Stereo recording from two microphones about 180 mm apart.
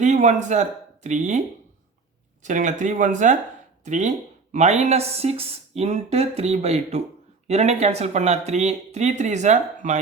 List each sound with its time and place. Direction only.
0.0 s speech: 40° right (ahead or behind)
2.4 s speech: 45° right (ahead or behind)